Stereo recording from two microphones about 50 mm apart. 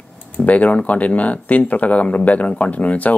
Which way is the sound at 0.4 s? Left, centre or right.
Left.